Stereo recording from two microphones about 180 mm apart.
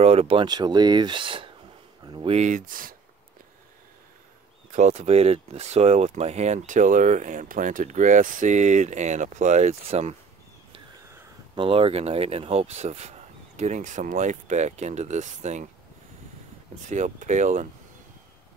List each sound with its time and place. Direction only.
0.0 s speech: 35° right (ahead or behind)
2.0 s a sound: 25° right (ahead or behind)
2.3 s speech: 40° right (ahead or behind)
4.7 s speech: 40° right (ahead or behind)
11.5 s speech: 30° right (ahead or behind)
16.9 s speech: 40° right (ahead or behind)